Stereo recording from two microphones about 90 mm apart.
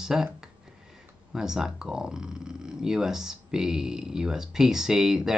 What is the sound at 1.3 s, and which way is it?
Speech, 5° right (ahead or behind).